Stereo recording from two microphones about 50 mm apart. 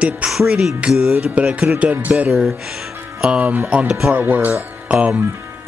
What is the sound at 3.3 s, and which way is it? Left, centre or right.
Music, right.